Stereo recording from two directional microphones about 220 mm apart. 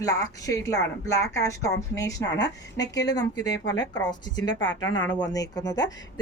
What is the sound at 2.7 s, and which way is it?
A woman's voice, 15° left (ahead or behind).